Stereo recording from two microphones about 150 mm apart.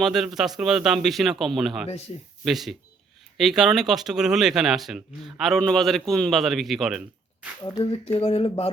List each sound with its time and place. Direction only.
0.0 s speech: 5° right (ahead or behind)
7.6 s speech: 25° left (ahead or behind)
7.9 s speech: 40° left (ahead or behind)